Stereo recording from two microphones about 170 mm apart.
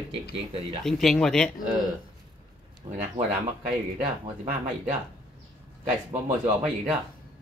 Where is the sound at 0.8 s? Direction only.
Centre (ahead or behind).